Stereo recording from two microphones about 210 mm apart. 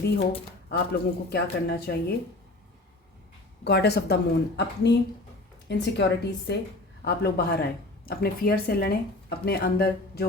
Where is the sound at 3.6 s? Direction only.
50° left (ahead or behind).